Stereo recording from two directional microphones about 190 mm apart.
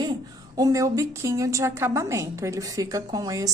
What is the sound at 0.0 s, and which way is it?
A woman's voice, 20° right (ahead or behind).